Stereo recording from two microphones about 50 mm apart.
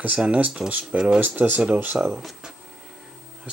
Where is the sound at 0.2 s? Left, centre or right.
Right.